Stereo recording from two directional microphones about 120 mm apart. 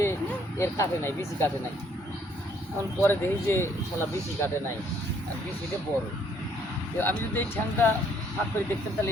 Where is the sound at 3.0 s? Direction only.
20° left (ahead or behind).